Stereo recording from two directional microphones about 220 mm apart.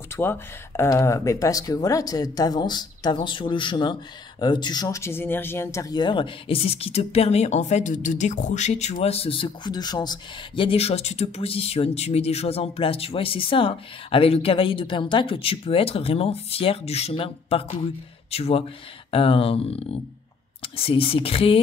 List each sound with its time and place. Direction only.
0.1 s speech: 10° left (ahead or behind); by 21.5 s 25° left (ahead or behind)